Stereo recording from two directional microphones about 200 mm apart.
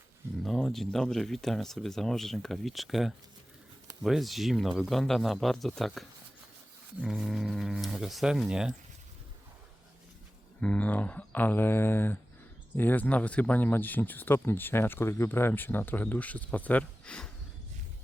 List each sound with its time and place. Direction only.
0.4 s speech: centre (ahead or behind)
10.6 s speech: 5° left (ahead or behind)